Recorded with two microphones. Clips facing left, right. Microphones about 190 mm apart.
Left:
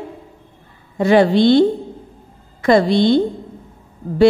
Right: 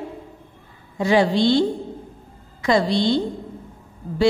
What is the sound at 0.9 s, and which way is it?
A woman's voice, 55° left (ahead or behind).